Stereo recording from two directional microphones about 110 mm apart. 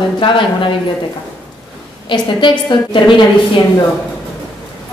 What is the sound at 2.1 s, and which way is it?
A woman's voice, 50° left (ahead or behind).